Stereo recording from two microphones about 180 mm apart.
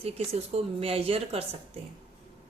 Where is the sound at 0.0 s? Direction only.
35° right (ahead or behind).